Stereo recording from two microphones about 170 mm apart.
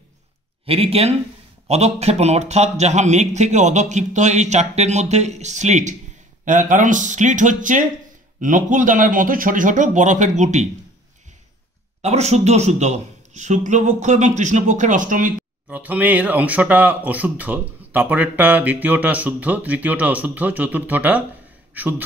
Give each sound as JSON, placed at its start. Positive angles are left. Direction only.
{"t": 0.7, "sound": "speech", "side_deg": -35}
{"t": 12.0, "sound": "speech", "side_deg": -40}
{"t": 15.7, "sound": "speech", "side_deg": -10}